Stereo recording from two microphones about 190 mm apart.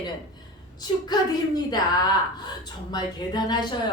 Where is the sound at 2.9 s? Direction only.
20° left (ahead or behind).